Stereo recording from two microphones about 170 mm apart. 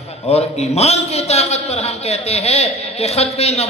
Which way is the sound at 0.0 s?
40° left (ahead or behind).